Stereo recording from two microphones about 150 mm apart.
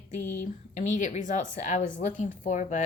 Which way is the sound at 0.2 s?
15° left (ahead or behind).